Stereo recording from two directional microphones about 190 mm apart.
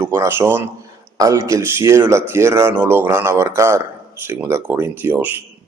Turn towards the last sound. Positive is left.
turn(degrees=-10)  # may be behind; listen again after turning